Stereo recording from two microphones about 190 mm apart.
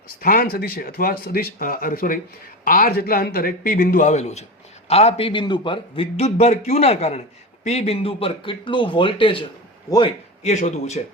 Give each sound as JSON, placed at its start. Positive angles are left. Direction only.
{"t": 0.2, "sound": "a man's voice", "side_deg": 45}
{"t": 10.4, "sound": "a man's voice", "side_deg": 40}